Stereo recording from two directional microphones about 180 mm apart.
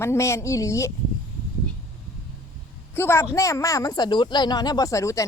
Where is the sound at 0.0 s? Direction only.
15° left (ahead or behind).